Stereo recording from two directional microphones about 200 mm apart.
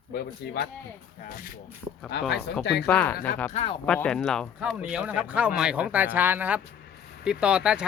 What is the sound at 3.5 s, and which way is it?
Speech, 25° left (ahead or behind).